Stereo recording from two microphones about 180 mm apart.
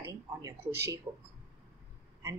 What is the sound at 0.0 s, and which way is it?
Speech, 15° right (ahead or behind).